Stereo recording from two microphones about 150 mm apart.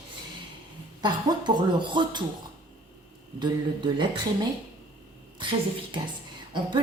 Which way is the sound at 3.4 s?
30° right (ahead or behind).